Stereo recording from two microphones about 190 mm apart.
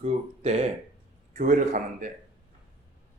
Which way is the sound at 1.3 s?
40° right (ahead or behind).